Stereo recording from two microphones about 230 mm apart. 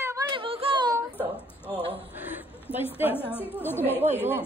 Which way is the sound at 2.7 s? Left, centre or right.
Centre.